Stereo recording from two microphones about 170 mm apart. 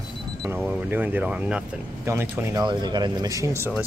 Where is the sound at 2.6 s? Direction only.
25° right (ahead or behind).